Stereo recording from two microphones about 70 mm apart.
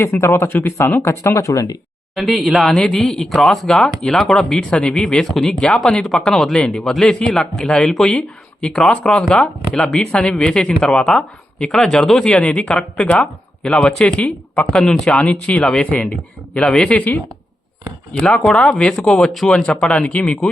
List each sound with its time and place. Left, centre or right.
0.0 s speech: left
1.2 s speech: left
2.1 s speech: centre
12.7 s speech: centre
14.1 s speech: centre
15.2 s speech: centre
18.4 s speech: centre